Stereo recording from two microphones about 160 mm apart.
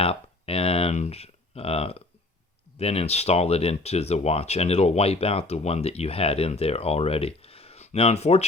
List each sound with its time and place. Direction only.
0.0 s speech: 35° left (ahead or behind)